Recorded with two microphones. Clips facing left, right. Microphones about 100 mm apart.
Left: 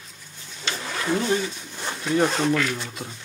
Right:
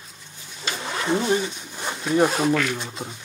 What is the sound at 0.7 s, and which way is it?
Speech, 20° right (ahead or behind).